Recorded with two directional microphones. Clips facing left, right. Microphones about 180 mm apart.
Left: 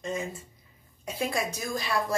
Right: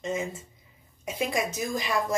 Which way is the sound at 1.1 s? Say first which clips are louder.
Right 2 dB; 15° right (ahead or behind).